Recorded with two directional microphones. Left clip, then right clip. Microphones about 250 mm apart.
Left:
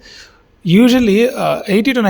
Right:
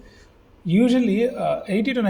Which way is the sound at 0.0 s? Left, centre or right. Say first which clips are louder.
Left 12 dB; left.